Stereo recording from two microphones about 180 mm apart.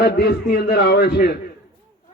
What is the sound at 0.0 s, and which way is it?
A man's voice, 65° left (ahead or behind).